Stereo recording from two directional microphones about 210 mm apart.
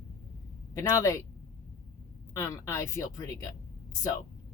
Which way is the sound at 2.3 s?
15° left (ahead or behind).